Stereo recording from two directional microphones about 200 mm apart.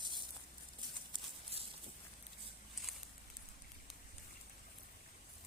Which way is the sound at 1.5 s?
30° right (ahead or behind).